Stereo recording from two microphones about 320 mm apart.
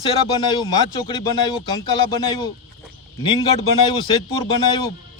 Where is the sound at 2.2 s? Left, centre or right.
Centre.